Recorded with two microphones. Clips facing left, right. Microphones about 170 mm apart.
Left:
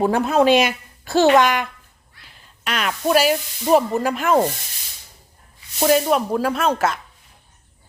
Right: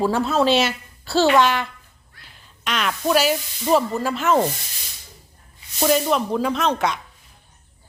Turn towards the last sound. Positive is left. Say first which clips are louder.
# left 1 dB
turn(degrees=5)  # may be behind; listen again after turning